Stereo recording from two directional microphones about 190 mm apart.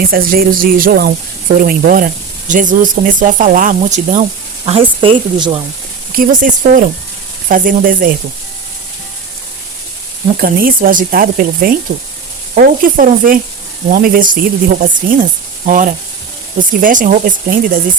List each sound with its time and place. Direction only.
0.0 s speech: 50° right (ahead or behind)
4.6 s speech: 25° right (ahead or behind)
6.1 s speech: 45° right (ahead or behind)
10.3 s speech: 50° right (ahead or behind)